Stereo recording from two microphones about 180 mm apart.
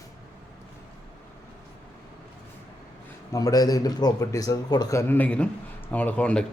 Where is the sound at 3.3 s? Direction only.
20° left (ahead or behind).